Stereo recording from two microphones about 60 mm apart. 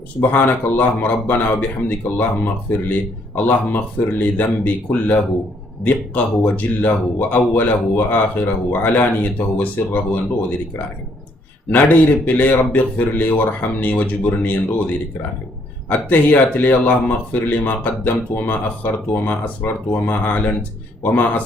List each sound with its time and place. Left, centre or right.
0.2 s speech: left
11.7 s speech: left
15.9 s speech: left